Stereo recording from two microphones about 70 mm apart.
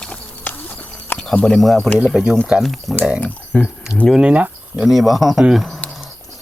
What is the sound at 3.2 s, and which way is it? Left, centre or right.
Speech, centre.